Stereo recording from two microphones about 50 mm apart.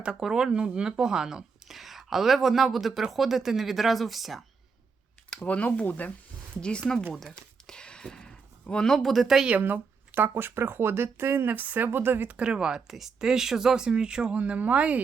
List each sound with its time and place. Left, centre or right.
0.2 s speech: centre
5.5 s speech: left
6.6 s speech: centre
7.3 s a sound: centre
8.9 s speech: centre
9.5 s speech: right
11.9 s speech: right
12.4 s speech: centre